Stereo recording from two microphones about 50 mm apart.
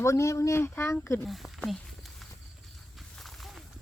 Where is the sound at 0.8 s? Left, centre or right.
Left.